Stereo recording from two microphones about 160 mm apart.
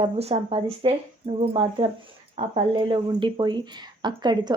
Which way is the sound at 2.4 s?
45° right (ahead or behind).